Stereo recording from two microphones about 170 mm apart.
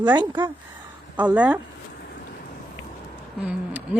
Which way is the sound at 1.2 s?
10° right (ahead or behind).